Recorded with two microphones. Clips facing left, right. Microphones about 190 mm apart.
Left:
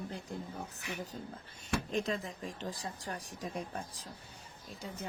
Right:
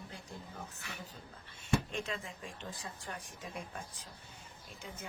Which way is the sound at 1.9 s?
40° left (ahead or behind).